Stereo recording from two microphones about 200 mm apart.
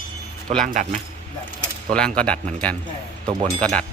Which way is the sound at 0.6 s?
40° right (ahead or behind).